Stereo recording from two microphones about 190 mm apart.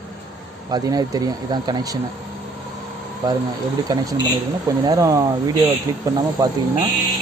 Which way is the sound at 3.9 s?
20° right (ahead or behind).